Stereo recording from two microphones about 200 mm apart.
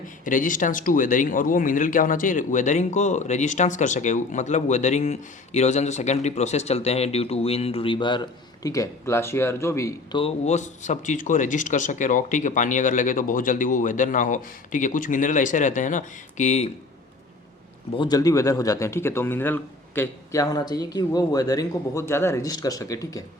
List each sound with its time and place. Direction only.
0.3 s speech: 40° left (ahead or behind)
17.9 s a man's voice: 20° left (ahead or behind)